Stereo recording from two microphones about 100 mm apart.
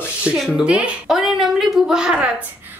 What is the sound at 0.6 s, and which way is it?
A woman's voice, 10° right (ahead or behind).